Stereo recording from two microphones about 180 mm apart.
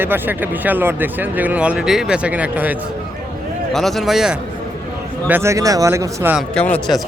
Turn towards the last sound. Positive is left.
turn(degrees=5)  # may be behind; listen again after turning